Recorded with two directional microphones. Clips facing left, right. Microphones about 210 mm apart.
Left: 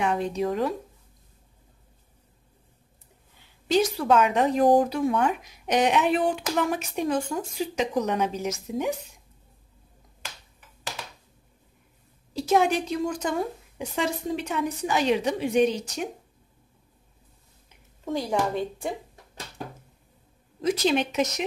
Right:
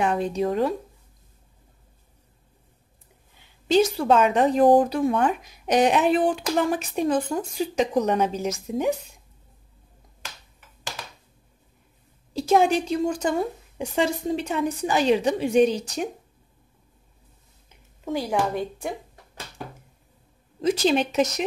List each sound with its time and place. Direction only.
0.0 s speech: 35° right (ahead or behind)
3.6 s speech: 25° right (ahead or behind)
12.4 s speech: 30° right (ahead or behind)
18.0 s speech: 5° right (ahead or behind)
20.6 s speech: 30° right (ahead or behind)